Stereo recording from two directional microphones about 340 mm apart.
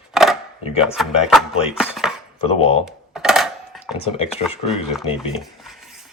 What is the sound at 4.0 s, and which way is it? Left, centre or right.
Speech, centre.